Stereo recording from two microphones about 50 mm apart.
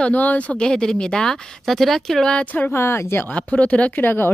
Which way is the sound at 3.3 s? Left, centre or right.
Left.